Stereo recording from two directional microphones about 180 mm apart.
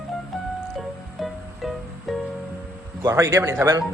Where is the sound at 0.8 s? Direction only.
Centre (ahead or behind).